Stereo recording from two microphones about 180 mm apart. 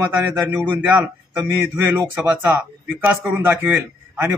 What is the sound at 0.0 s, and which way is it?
Speech, 10° right (ahead or behind).